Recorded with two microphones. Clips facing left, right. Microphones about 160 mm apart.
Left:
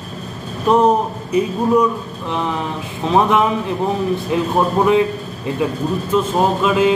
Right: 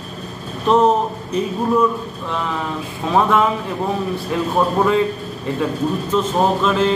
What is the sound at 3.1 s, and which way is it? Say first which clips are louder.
A man's voice: left 1 dB; 20° left (ahead or behind).